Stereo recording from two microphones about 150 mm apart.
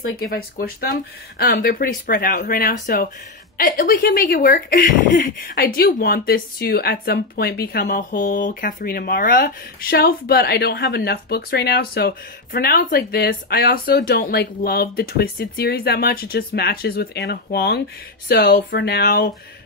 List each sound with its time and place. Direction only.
0.2 s speech: 75° left (ahead or behind)